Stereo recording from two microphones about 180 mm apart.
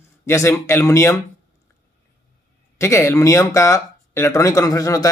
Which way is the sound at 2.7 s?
15° left (ahead or behind).